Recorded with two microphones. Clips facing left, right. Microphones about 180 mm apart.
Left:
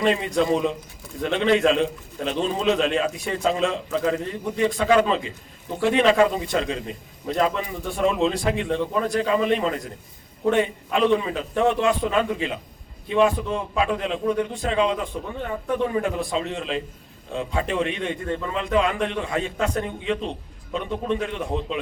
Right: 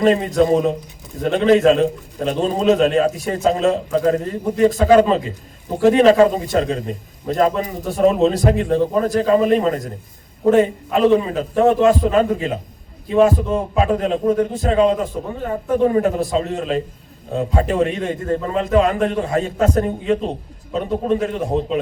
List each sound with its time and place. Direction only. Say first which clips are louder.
0.0 s a man's voice: right 6 dB; 40° right (ahead or behind)